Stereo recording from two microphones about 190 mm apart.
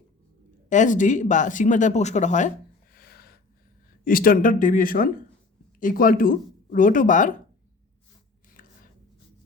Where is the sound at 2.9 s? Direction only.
55° left (ahead or behind).